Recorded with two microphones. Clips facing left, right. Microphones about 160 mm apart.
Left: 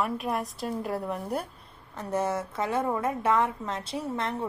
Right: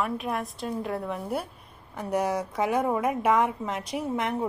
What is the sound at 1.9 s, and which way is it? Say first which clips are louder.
A woman's voice: right 2 dB; 15° right (ahead or behind).